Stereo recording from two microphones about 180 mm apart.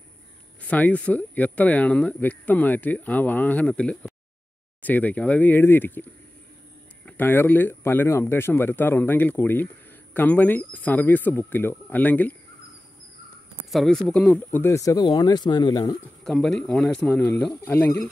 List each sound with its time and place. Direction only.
0.6 s speech: 10° left (ahead or behind)
7.1 s speech: 10° left (ahead or behind)
13.7 s speech: centre (ahead or behind); by 16.0 s 25° left (ahead or behind)
16.3 s speech: 5° left (ahead or behind)